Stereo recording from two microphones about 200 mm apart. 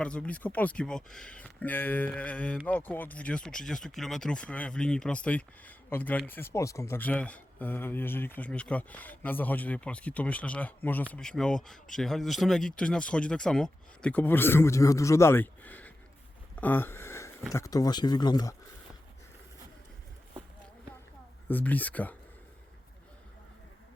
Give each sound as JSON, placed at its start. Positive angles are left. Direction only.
{"t": 0.0, "sound": "speech", "side_deg": 5}
{"t": 16.6, "sound": "a sound", "side_deg": 10}
{"t": 17.5, "sound": "speech", "side_deg": 15}
{"t": 21.4, "sound": "speech", "side_deg": 10}